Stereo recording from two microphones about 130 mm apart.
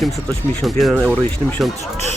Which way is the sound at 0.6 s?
Centre (ahead or behind).